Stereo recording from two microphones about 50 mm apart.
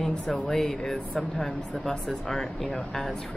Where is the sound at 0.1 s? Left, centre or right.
Centre.